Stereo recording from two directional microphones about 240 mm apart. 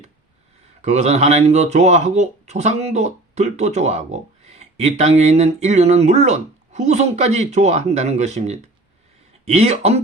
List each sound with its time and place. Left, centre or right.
0.8 s speech: right